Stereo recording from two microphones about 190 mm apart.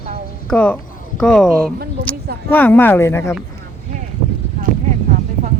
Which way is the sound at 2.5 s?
10° left (ahead or behind).